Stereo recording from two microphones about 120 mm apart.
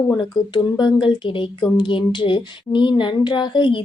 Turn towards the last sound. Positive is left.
turn(degrees=40)  # may be behind; listen again after turning